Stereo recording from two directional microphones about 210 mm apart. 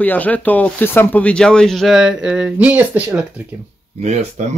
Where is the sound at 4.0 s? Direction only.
35° right (ahead or behind).